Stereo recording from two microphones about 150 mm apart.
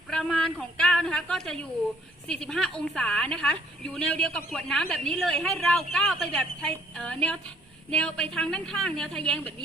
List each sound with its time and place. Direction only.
0.1 s a woman's voice: 5° left (ahead or behind)